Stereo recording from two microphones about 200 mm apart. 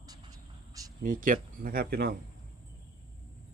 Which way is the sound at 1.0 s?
40° right (ahead or behind).